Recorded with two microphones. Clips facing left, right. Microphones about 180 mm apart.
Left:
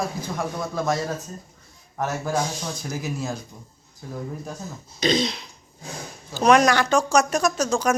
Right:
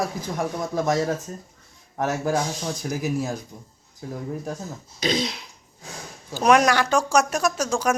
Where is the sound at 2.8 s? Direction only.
15° right (ahead or behind).